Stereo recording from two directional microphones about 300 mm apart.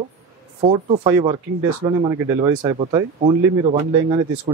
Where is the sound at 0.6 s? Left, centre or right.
Right.